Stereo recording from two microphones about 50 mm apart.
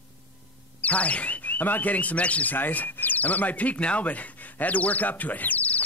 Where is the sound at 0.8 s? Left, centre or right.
Left.